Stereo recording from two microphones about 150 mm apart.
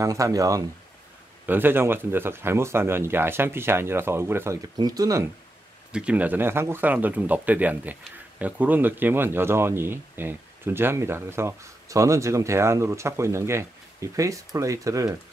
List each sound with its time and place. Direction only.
0.0 s speech: 20° right (ahead or behind)
1.4 s speech: 15° right (ahead or behind)
5.9 s speech: 5° right (ahead or behind)